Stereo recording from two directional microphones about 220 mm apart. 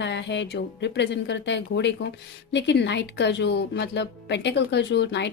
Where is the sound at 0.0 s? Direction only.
55° left (ahead or behind).